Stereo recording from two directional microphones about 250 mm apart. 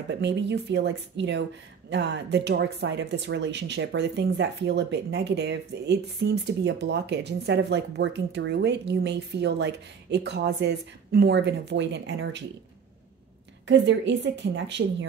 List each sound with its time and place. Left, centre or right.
0.1 s speech: right
13.7 s speech: right